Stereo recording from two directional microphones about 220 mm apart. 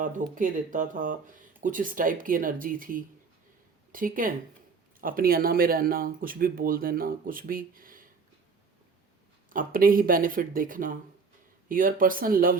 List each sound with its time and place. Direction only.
0.0 s speech: 35° right (ahead or behind)
9.5 s speech: 40° right (ahead or behind)